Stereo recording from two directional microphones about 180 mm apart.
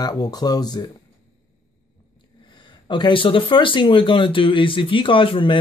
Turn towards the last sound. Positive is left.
turn(degrees=30)  # may be behind; listen again after turning